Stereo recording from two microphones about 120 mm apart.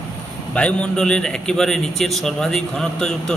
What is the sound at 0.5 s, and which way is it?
A man's voice, 10° left (ahead or behind).